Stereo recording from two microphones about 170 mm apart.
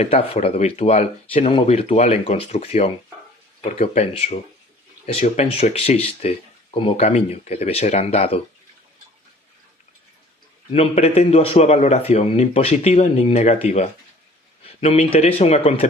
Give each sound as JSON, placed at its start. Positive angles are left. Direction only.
{"t": 0.0, "sound": "speech", "side_deg": 35}
{"t": 10.7, "sound": "speech", "side_deg": 35}